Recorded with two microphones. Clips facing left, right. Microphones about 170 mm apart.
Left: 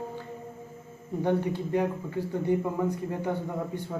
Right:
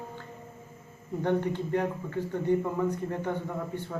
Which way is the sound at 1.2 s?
10° left (ahead or behind).